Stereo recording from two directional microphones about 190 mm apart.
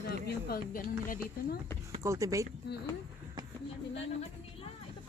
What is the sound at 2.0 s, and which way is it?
Speech, 15° right (ahead or behind).